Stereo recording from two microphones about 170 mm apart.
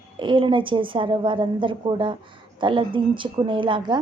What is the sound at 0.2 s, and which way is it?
A woman's voice, 30° right (ahead or behind).